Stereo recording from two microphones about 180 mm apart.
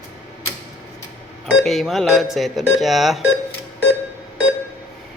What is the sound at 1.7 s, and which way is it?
Speech, centre (ahead or behind).